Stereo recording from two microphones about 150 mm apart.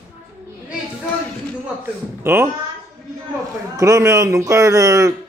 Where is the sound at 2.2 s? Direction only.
15° right (ahead or behind).